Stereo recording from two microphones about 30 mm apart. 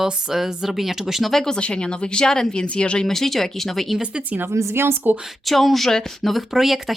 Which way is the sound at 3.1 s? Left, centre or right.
Centre.